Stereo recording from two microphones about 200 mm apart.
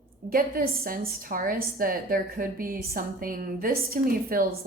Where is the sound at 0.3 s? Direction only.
45° right (ahead or behind).